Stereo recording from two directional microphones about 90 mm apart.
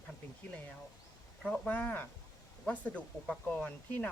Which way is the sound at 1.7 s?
15° left (ahead or behind).